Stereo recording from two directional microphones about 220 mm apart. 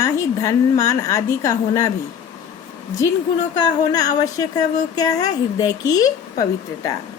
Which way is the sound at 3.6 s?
15° left (ahead or behind).